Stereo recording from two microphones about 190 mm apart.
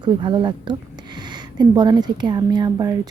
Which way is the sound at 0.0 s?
25° right (ahead or behind).